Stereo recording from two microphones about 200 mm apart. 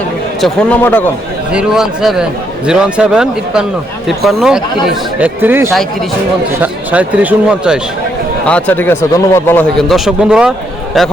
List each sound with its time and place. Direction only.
0.4 s a man's voice: 10° left (ahead or behind)
1.5 s a man's voice: 5° right (ahead or behind)
8.4 s a man's voice: 5° left (ahead or behind)
10.1 s speech: 5° right (ahead or behind)